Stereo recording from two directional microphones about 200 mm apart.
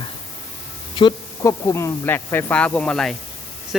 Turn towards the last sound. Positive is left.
turn(degrees=5)  # may be behind; listen again after turning